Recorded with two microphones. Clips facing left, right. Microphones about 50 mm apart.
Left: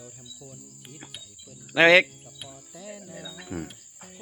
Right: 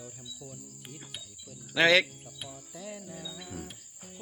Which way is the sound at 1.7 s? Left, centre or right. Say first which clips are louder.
Left 6 dB; left.